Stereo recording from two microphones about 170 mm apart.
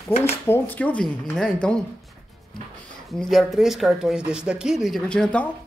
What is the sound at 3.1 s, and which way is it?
Speech, centre (ahead or behind).